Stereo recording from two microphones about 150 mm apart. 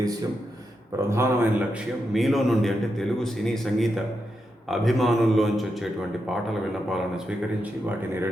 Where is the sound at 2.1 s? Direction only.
Centre (ahead or behind).